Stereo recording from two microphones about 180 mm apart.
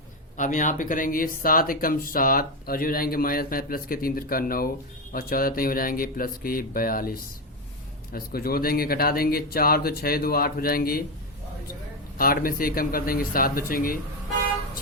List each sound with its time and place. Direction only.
0.3 s speech: 45° left (ahead or behind)
12.1 s speech: 55° left (ahead or behind)